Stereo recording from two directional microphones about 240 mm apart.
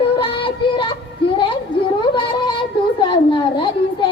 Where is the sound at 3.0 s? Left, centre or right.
Centre.